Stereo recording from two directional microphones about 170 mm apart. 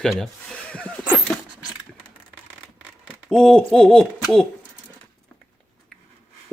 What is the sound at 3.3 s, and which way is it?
Speech, 5° left (ahead or behind).